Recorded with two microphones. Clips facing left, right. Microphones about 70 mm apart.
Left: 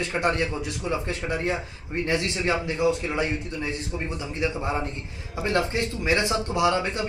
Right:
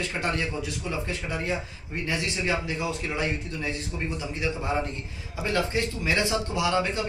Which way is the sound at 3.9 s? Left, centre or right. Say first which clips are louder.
Left 1 dB; left.